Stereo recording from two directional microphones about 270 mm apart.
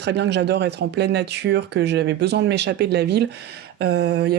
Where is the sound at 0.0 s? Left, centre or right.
Right.